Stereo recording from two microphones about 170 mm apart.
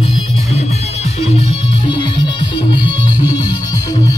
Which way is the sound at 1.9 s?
30° left (ahead or behind).